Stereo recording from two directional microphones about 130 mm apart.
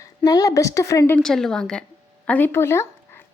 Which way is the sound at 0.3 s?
30° left (ahead or behind).